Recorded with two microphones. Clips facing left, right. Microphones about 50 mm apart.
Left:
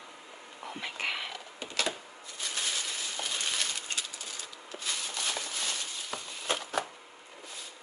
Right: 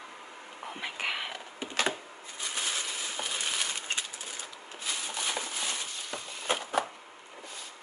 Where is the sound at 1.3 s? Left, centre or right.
Right.